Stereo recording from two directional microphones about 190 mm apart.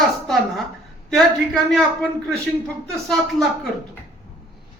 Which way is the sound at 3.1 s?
Centre (ahead or behind).